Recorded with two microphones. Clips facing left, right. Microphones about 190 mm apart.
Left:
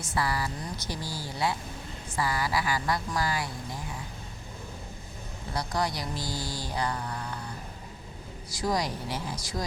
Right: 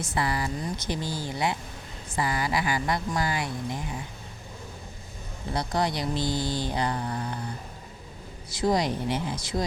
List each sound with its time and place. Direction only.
0.1 s speech: 20° right (ahead or behind)
5.5 s speech: 25° right (ahead or behind)
8.4 s speech: 25° right (ahead or behind)